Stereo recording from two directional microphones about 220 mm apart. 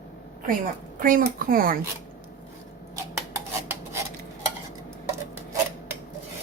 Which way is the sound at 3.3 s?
10° right (ahead or behind).